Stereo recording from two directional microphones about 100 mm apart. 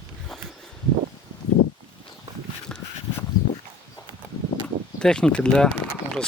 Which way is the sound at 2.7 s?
10° left (ahead or behind).